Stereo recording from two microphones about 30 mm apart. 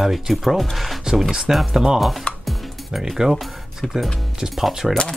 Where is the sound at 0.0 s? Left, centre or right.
Centre.